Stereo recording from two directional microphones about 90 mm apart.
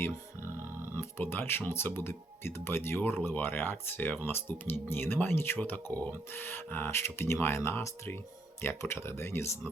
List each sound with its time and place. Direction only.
0.9 s speech: 25° left (ahead or behind)